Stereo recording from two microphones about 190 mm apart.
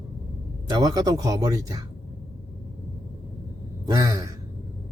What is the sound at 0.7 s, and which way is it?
Speech, 20° right (ahead or behind).